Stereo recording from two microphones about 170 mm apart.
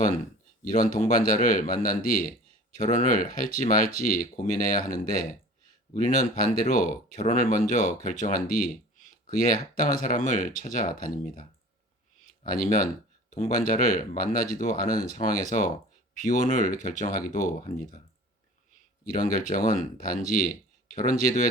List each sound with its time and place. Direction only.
0.6 s speech: 50° left (ahead or behind)
12.5 s speech: 55° left (ahead or behind)